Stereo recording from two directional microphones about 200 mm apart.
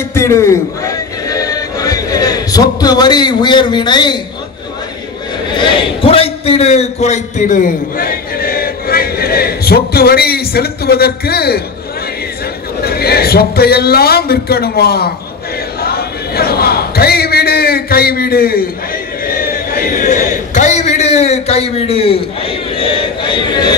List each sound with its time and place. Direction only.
0.1 s music: 15° left (ahead or behind)
5.5 s a man's voice: 25° left (ahead or behind); by 11.6 s 50° left (ahead or behind)
12.8 s a man's voice: 50° left (ahead or behind)
15.8 s a sound: 50° left (ahead or behind)
19.2 s a man's voice: 45° left (ahead or behind); by 23.7 s 20° left (ahead or behind)